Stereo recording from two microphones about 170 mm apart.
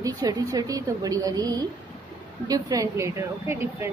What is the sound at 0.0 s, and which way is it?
A woman's voice, 20° right (ahead or behind).